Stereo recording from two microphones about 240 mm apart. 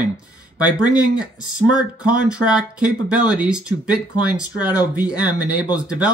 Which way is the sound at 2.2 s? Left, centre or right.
Centre.